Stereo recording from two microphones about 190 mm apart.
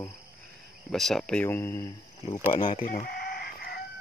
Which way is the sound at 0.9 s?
Centre (ahead or behind).